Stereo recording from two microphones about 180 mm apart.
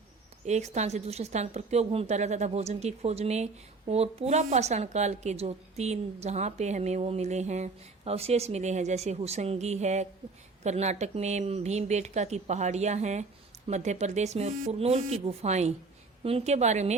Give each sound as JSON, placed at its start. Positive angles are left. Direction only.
{"t": 0.4, "sound": "a woman's voice", "side_deg": -40}